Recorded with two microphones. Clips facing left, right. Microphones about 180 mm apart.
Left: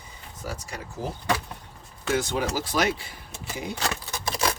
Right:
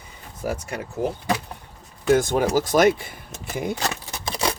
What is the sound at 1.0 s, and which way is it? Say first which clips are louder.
Speech: right 8 dB; 60° right (ahead or behind).